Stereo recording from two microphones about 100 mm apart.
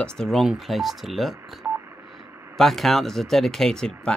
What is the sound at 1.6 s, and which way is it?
Telephone dialing, 20° right (ahead or behind).